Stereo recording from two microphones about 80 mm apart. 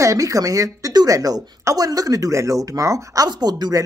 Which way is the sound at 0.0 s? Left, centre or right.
Right.